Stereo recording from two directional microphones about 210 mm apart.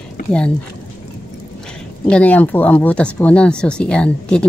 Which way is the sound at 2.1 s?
5° left (ahead or behind).